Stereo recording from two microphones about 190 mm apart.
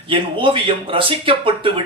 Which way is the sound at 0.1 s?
25° right (ahead or behind).